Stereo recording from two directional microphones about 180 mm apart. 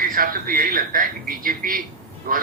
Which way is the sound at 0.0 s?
50° right (ahead or behind).